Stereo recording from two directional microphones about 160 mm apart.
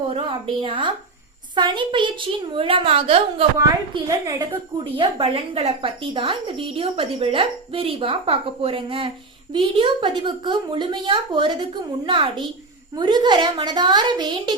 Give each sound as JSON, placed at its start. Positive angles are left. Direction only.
{"t": 0.1, "sound": "a woman's voice", "side_deg": -35}
{"t": 3.6, "sound": "a woman's voice", "side_deg": -20}